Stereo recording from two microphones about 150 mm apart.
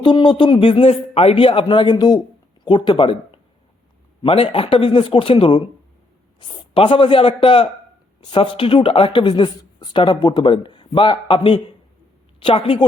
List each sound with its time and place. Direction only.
0.0 s speech: 30° left (ahead or behind)